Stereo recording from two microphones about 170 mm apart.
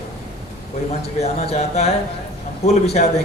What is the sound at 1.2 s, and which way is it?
A man's voice, 40° left (ahead or behind).